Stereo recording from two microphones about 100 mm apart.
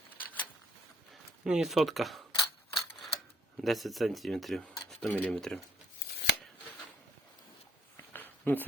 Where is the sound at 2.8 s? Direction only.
Centre (ahead or behind).